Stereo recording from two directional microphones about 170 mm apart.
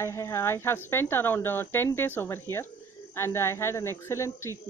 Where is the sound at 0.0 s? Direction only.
20° left (ahead or behind).